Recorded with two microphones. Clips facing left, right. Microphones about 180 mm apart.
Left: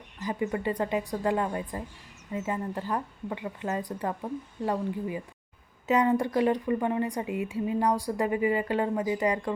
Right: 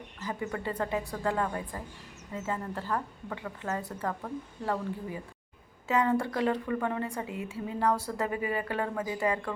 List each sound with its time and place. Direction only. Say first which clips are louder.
0.2 s a woman's voice: left 5 dB; 15° left (ahead or behind)